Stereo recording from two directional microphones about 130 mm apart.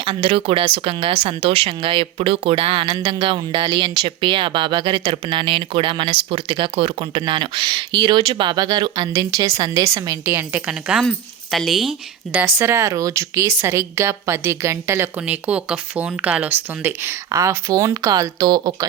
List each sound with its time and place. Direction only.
0.0 s a woman's voice: 45° right (ahead or behind); by 10.4 s 20° right (ahead or behind)
10.5 s a woman's voice: 5° right (ahead or behind)
12.4 s a woman's voice: 20° right (ahead or behind)